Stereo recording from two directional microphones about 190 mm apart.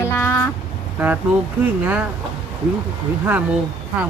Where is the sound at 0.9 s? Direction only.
10° right (ahead or behind).